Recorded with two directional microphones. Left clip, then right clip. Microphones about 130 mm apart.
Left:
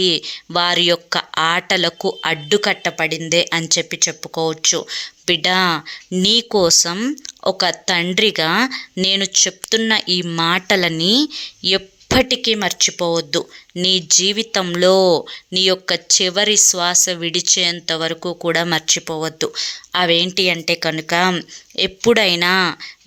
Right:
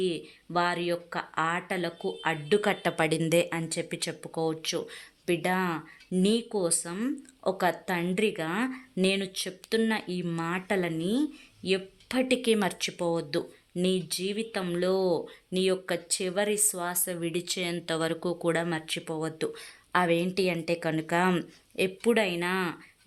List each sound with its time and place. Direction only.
0.0 s speech: 35° left (ahead or behind)
2.8 s speech: centre (ahead or behind)
3.4 s speech: 20° left (ahead or behind)
3.8 s speech: 10° left (ahead or behind)
4.2 s speech: 25° left (ahead or behind)
6.5 s speech: 40° left (ahead or behind)
12.4 s speech: 5° left (ahead or behind)
12.8 s speech: 20° left (ahead or behind); by 15.2 s 35° left (ahead or behind)
15.5 s speech: 25° left (ahead or behind)
18.5 s speech: 30° left (ahead or behind)
21.8 s speech: 30° left (ahead or behind)